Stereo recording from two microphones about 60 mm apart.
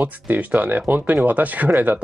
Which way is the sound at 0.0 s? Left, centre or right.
Right.